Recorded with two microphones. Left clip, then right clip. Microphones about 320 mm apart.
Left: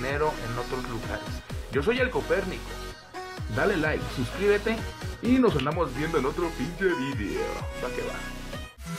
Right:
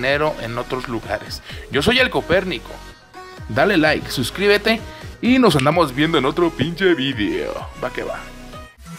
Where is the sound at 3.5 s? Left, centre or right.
Right.